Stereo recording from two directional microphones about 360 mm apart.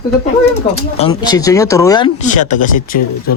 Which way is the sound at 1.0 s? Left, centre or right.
Centre.